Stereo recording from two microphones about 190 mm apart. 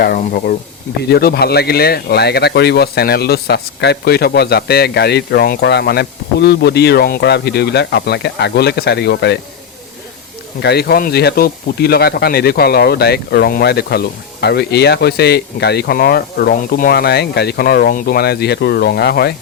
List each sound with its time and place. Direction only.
0.0 s speech: 50° left (ahead or behind)
10.6 s speech: 60° left (ahead or behind)